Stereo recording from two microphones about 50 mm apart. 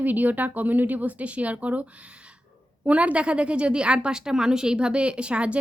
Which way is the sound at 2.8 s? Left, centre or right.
Right.